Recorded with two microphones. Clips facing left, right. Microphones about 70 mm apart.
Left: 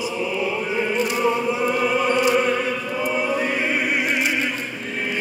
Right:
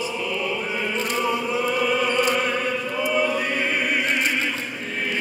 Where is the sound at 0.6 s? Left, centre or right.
Centre.